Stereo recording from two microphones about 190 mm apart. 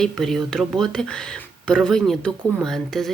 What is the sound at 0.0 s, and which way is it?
Speech, centre (ahead or behind).